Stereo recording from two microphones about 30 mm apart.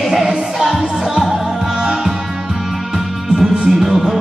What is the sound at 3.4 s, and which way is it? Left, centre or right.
Music, centre.